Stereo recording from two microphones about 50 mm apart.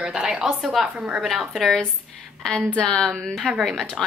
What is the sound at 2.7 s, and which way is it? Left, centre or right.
Speech, centre.